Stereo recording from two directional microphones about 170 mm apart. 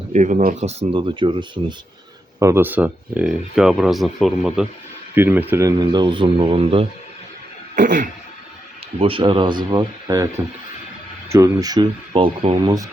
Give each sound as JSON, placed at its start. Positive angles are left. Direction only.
{"t": 0.1, "sound": "speech", "side_deg": -45}
{"t": 2.4, "sound": "speech", "side_deg": -15}
{"t": 5.1, "sound": "speech", "side_deg": -10}
{"t": 7.8, "sound": "a sound", "side_deg": -50}
{"t": 9.0, "sound": "speech", "side_deg": -30}
{"t": 11.3, "sound": "speech", "side_deg": -15}